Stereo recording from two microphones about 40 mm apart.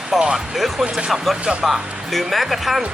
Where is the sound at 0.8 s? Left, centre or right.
Centre.